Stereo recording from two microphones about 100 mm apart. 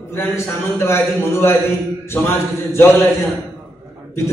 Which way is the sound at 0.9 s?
25° left (ahead or behind).